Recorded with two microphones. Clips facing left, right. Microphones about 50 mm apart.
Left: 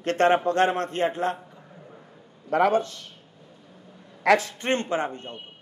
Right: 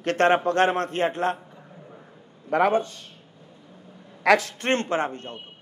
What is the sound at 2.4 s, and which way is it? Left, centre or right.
Speech, right.